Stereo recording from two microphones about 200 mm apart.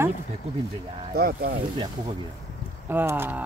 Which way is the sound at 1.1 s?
50° right (ahead or behind).